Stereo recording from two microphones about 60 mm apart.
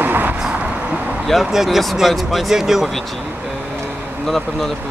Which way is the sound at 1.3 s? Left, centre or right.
Centre.